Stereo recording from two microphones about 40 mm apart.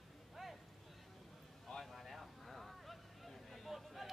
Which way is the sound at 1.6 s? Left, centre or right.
Centre.